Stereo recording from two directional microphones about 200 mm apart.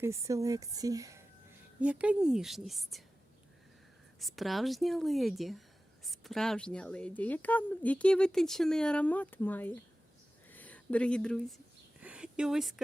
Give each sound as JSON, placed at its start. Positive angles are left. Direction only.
{"t": 0.0, "sound": "speech", "side_deg": -15}
{"t": 1.8, "sound": "speech", "side_deg": -5}
{"t": 4.2, "sound": "speech", "side_deg": 0}
{"t": 12.0, "sound": "a sound", "side_deg": -5}